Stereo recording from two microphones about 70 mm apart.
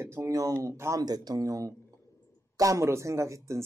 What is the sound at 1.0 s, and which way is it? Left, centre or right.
A woman's voice, right.